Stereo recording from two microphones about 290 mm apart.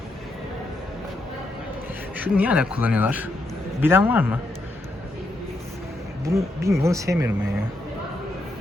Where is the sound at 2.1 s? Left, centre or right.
Centre.